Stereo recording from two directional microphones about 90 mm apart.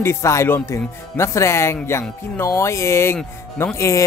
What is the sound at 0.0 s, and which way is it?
Speech, 35° left (ahead or behind).